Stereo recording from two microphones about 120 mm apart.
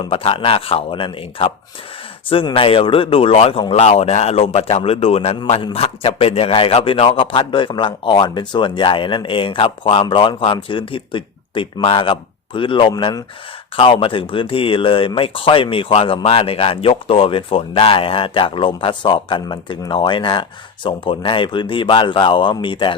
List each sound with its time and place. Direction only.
0.0 s speech: 50° left (ahead or behind)